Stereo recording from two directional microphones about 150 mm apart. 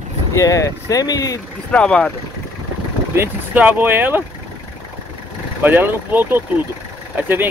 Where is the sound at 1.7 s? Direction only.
5° left (ahead or behind).